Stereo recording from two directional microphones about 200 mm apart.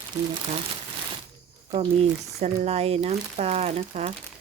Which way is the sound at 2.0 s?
30° right (ahead or behind).